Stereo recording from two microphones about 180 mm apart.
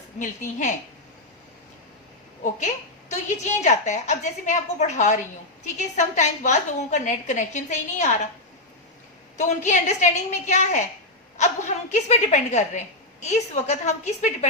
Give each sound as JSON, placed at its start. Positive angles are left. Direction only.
{"t": 0.2, "sound": "a woman's voice", "side_deg": 45}
{"t": 3.1, "sound": "a woman's voice", "side_deg": 40}
{"t": 9.4, "sound": "a woman's voice", "side_deg": 40}